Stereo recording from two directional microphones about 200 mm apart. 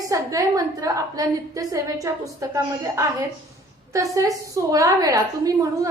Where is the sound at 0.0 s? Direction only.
15° right (ahead or behind).